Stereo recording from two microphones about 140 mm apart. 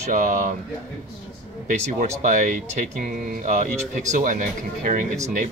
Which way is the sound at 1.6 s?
70° right (ahead or behind).